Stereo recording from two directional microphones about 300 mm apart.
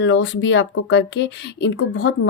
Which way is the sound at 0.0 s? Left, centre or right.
Left.